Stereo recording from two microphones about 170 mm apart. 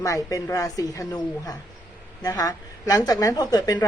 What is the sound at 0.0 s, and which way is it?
A woman's voice, 20° left (ahead or behind).